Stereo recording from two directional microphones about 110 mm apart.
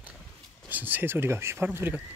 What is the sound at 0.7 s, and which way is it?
Speech, 15° right (ahead or behind).